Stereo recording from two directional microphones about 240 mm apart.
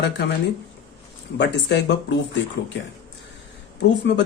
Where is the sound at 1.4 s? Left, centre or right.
Left.